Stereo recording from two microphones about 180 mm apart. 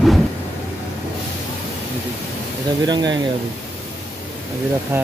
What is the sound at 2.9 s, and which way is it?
Speech, 25° right (ahead or behind).